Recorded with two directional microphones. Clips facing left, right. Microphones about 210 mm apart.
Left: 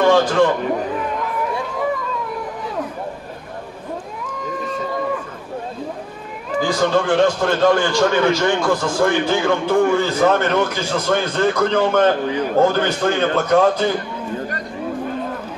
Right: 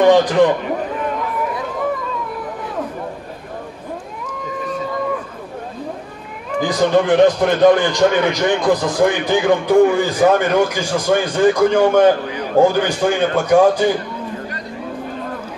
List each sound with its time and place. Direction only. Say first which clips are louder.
0.0 s a man's voice: right 3 dB; 15° right (ahead or behind)
6.6 s a man's voice: right 3 dB; 20° right (ahead or behind)